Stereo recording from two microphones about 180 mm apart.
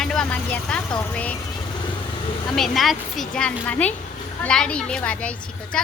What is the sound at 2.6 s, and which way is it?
A woman's voice, centre (ahead or behind).